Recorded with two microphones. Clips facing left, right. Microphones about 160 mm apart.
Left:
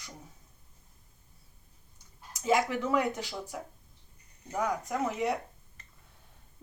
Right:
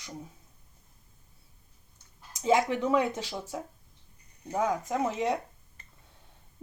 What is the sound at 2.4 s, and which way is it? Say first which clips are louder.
Speech: right 2 dB; 25° right (ahead or behind).